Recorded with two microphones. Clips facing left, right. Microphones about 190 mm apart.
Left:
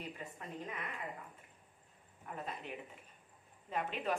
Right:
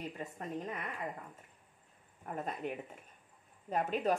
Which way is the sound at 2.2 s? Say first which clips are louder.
Right 6 dB; 45° right (ahead or behind).